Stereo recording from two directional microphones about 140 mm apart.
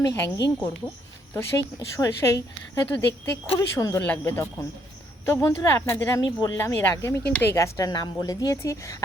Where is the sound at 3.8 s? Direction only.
20° left (ahead or behind).